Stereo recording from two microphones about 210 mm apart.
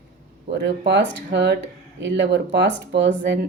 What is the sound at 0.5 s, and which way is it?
Speech, 55° right (ahead or behind).